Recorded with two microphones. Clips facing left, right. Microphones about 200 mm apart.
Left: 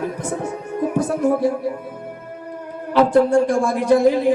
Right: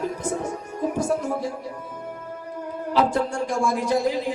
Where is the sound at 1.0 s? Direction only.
55° left (ahead or behind).